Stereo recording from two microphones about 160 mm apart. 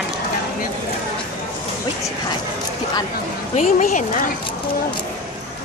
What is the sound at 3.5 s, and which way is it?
Speech, 55° left (ahead or behind).